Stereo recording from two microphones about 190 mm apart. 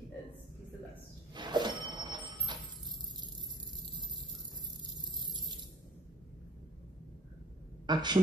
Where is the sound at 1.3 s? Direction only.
25° right (ahead or behind).